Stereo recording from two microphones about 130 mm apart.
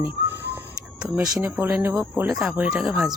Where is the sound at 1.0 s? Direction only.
10° right (ahead or behind).